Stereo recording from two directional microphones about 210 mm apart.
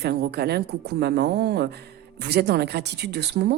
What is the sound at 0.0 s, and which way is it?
Speech, 50° right (ahead or behind).